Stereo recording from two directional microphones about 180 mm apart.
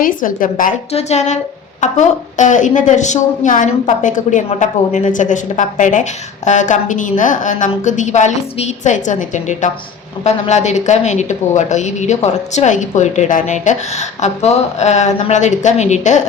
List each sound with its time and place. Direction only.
0.0 s a woman's voice: 50° left (ahead or behind)
0.9 s a woman's voice: 40° left (ahead or behind)